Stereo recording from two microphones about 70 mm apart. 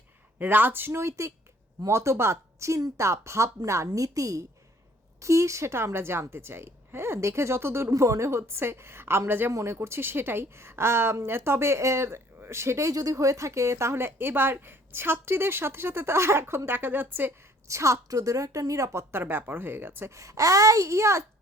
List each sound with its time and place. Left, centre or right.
0.3 s a woman's voice: right
3.8 s a woman's voice: right
9.5 s a woman's voice: right
17.7 s a woman's voice: right
20.1 s a woman's voice: right